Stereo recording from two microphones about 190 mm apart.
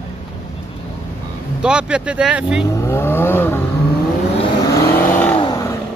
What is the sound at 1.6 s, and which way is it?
Speech, 5° right (ahead or behind).